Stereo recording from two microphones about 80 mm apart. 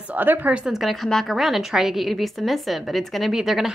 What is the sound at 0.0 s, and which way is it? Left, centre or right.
Speech, right.